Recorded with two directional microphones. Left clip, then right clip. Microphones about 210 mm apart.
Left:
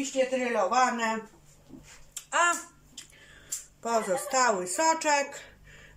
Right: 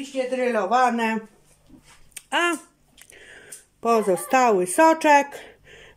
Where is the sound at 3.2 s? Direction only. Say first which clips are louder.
Left 3 dB; 40° right (ahead or behind).